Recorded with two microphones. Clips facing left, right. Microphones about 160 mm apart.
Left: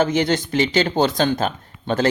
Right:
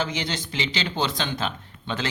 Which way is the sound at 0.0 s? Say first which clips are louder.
Left 10 dB; 50° left (ahead or behind).